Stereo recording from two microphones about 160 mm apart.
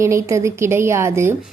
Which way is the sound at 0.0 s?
20° right (ahead or behind).